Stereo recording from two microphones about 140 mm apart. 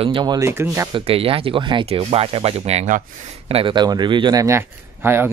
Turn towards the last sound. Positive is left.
turn(degrees=-15)  # may be behind; listen again after turning